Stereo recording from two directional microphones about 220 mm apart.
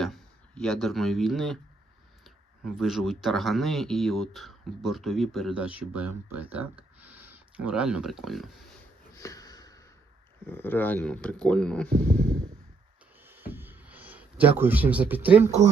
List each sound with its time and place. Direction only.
0.0 s speech: centre (ahead or behind)
9.1 s sniff: 15° left (ahead or behind)
10.4 s speech: 10° left (ahead or behind)
13.2 s a sound: 10° right (ahead or behind)